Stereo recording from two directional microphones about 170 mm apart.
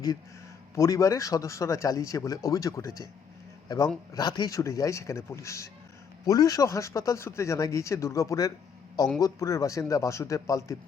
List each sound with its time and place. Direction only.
0.8 s speech: 20° left (ahead or behind)
4.1 s speech: 25° left (ahead or behind)